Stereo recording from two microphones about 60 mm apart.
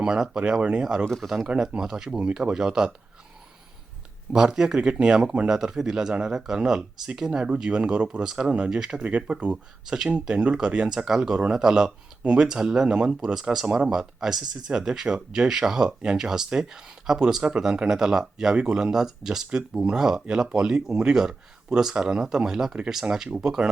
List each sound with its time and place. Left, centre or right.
0.0 s speech: centre
1.0 s speech: centre
1.5 s speech: centre
4.3 s speech: centre
9.5 s speech: centre